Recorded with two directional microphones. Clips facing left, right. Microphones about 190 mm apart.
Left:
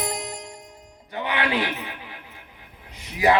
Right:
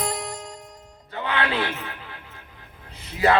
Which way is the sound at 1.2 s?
15° left (ahead or behind).